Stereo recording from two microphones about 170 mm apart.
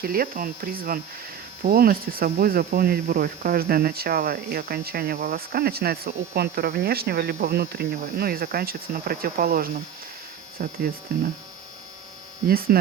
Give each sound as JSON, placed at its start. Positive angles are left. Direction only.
{"t": 0.0, "sound": "speech", "side_deg": -60}
{"t": 12.5, "sound": "speech", "side_deg": -60}